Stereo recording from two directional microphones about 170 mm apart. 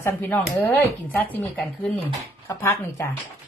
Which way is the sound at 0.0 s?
15° left (ahead or behind).